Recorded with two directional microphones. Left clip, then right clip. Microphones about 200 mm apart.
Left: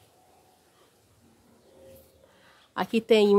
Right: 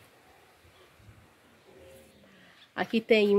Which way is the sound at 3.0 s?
20° left (ahead or behind).